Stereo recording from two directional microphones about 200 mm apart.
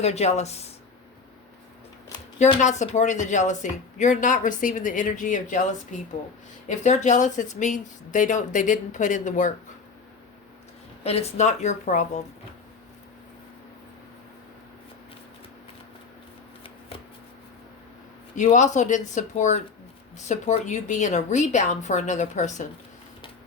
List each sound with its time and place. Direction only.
0.0 s speech: 35° left (ahead or behind)
2.4 s speech: 35° left (ahead or behind)
11.0 s speech: 30° left (ahead or behind)
18.3 s speech: 35° left (ahead or behind)